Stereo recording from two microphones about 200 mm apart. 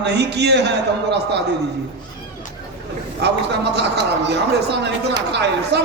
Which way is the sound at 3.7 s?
60° right (ahead or behind).